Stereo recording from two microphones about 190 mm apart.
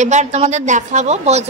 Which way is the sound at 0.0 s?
40° right (ahead or behind).